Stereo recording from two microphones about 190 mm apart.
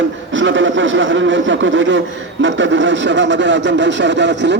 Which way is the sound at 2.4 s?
75° right (ahead or behind).